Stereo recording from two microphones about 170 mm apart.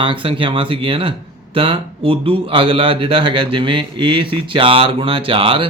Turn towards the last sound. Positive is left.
turn(degrees=-30)  # may be behind; listen again after turning